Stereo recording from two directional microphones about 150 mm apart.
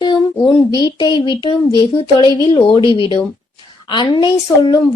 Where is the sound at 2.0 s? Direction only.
30° left (ahead or behind).